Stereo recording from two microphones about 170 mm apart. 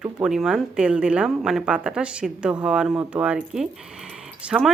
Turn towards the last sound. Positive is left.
turn(degrees=-5)  # may be behind; listen again after turning